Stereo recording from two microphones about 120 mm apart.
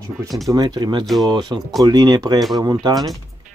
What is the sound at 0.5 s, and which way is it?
Speech, 35° right (ahead or behind).